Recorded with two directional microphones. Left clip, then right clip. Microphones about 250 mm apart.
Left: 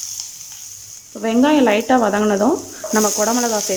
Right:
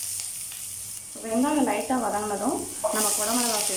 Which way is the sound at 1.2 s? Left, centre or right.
Left.